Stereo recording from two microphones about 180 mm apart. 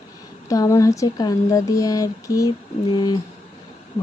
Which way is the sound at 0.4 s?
20° left (ahead or behind).